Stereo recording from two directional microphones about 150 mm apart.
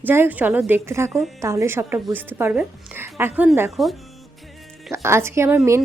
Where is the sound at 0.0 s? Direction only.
15° right (ahead or behind).